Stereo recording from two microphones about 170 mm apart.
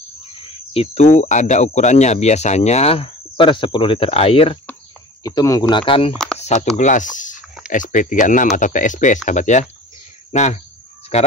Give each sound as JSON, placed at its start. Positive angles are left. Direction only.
{"t": 0.7, "sound": "speech", "side_deg": 40}
{"t": 5.2, "sound": "speech", "side_deg": 20}
{"t": 6.1, "sound": "a sound", "side_deg": 5}
{"t": 6.4, "sound": "speech", "side_deg": 45}